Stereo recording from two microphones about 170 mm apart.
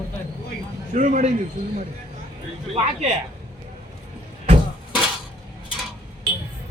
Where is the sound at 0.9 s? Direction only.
50° right (ahead or behind).